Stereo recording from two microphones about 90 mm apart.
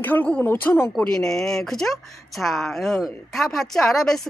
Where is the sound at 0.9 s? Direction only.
10° left (ahead or behind).